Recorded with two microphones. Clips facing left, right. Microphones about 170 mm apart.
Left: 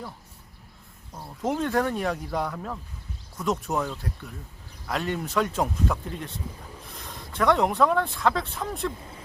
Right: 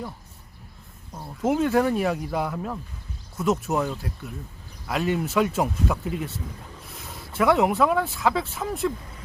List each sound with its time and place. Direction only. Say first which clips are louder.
1.1 s speech: right 4 dB; 5° right (ahead or behind)